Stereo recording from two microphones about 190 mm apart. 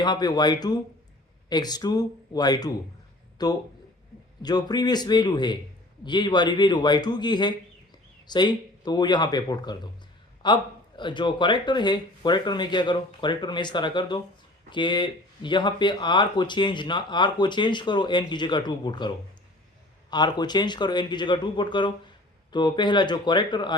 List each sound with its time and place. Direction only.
0.0 s speech: 20° left (ahead or behind)